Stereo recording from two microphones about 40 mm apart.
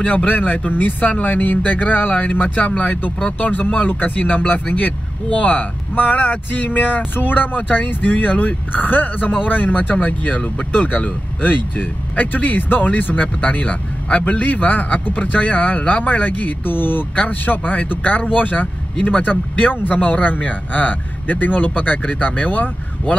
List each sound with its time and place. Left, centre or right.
0.3 s speech: left
17.1 s speech: left